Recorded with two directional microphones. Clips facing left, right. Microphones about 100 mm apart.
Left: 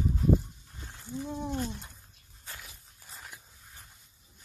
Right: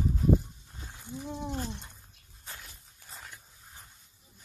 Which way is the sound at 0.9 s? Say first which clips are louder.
Left 2 dB; 15° right (ahead or behind).